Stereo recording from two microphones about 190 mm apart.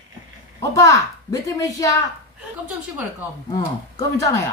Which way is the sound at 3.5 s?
20° left (ahead or behind).